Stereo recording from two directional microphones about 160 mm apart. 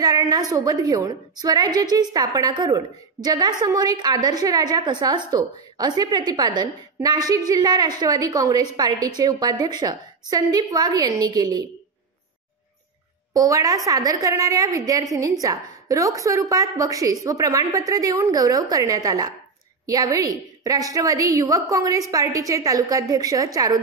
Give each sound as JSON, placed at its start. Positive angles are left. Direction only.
{"t": 0.0, "sound": "a woman's voice", "side_deg": -25}
{"t": 13.3, "sound": "a woman's voice", "side_deg": -20}